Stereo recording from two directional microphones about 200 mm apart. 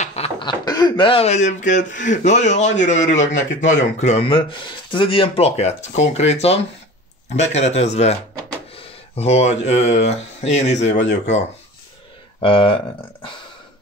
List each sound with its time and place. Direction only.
0.0 s speech: 30° left (ahead or behind)
12.4 s speech: 25° left (ahead or behind)